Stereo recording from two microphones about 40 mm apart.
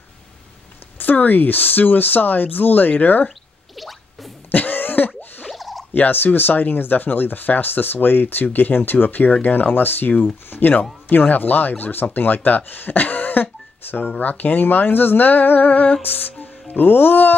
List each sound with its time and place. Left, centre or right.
0.9 s speech: left
3.7 s music: centre
4.5 s a sound: left
5.5 s a sound: centre
5.9 s speech: left
14.2 s speech: left
16.1 s music: left